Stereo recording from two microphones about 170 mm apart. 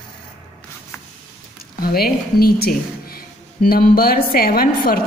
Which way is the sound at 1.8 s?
60° left (ahead or behind).